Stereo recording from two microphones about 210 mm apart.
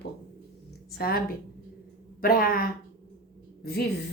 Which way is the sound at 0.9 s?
45° left (ahead or behind).